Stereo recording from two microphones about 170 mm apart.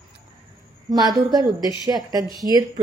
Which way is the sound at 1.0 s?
Centre (ahead or behind).